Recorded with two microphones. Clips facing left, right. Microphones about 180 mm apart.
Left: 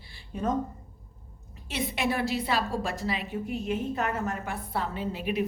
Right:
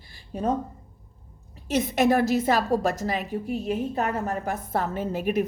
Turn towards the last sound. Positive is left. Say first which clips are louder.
# right 4 dB
turn(degrees=-45)  # may be behind; listen again after turning